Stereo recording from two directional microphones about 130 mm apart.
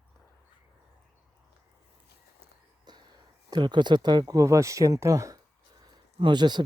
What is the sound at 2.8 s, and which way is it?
Speech, 35° right (ahead or behind).